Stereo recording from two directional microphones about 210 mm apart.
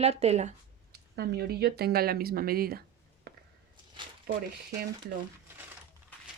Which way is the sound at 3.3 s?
50° right (ahead or behind).